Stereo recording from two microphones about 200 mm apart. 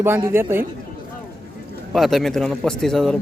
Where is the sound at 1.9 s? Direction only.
Centre (ahead or behind).